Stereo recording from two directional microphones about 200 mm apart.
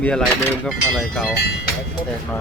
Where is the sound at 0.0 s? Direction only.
5° left (ahead or behind).